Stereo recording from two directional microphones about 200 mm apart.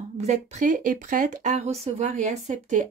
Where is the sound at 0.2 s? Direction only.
40° right (ahead or behind).